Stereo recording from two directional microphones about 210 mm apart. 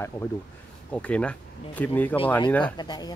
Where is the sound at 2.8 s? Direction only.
20° left (ahead or behind).